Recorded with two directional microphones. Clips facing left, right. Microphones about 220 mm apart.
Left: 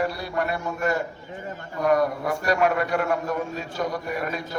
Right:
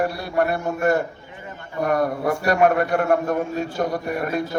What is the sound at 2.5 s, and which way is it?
A man's voice, 50° right (ahead or behind).